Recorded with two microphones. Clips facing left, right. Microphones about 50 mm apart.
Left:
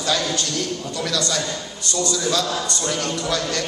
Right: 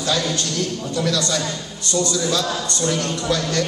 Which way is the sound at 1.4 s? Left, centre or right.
Left.